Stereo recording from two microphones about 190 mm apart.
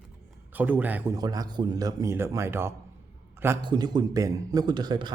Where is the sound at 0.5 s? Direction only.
10° right (ahead or behind).